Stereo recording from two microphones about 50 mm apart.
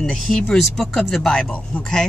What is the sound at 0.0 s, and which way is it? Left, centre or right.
Speech, centre.